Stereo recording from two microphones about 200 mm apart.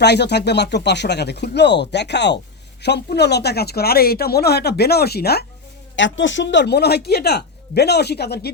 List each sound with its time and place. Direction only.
0.0 s speech: 55° left (ahead or behind)
6.0 s speech: 65° left (ahead or behind)